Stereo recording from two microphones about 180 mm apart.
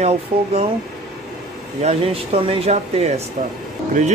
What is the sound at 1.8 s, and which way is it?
Speech, 35° right (ahead or behind).